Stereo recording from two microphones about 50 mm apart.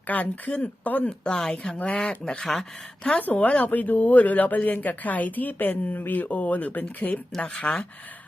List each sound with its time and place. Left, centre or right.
0.1 s speech: left
1.2 s speech: centre
2.4 s speech: centre
3.2 s speech: left